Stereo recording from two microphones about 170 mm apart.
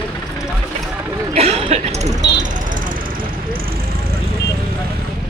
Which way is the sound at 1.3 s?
35° right (ahead or behind).